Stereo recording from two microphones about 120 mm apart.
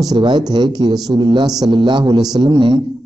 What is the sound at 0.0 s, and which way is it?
A man's voice, 35° right (ahead or behind).